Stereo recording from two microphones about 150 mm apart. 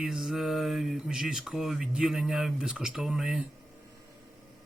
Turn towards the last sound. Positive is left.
turn(degrees=-5)  # may be behind; listen again after turning